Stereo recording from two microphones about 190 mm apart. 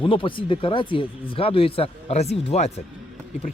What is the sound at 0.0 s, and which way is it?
Speech, 25° left (ahead or behind).